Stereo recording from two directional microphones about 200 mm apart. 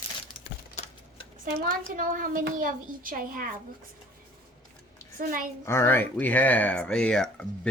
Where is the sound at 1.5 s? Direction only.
40° right (ahead or behind).